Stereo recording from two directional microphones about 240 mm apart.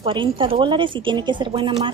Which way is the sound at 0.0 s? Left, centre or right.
Right.